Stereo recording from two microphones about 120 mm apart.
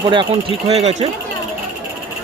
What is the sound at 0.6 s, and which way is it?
Speech, 65° right (ahead or behind).